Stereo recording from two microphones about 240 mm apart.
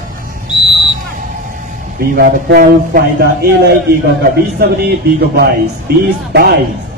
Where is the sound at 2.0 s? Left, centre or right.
Right.